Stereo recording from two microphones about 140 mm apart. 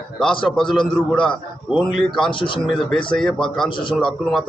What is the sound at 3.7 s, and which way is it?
Speech, 35° left (ahead or behind).